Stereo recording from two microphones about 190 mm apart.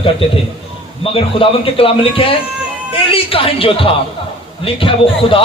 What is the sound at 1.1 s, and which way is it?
A man's voice, 30° left (ahead or behind).